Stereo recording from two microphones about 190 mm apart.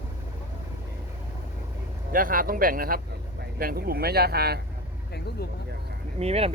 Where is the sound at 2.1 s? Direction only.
50° right (ahead or behind).